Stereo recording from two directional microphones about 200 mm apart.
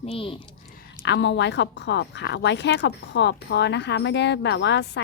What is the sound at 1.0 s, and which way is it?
A woman's voice, 65° left (ahead or behind).